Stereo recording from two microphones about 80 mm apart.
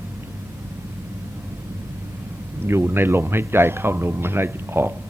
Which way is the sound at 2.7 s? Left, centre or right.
Right.